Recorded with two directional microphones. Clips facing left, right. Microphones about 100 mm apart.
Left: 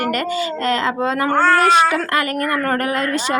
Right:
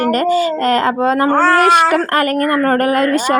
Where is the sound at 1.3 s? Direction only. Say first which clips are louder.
Right 1 dB; 85° right.